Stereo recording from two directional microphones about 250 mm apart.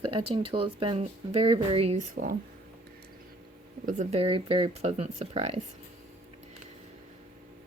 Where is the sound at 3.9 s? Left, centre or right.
Right.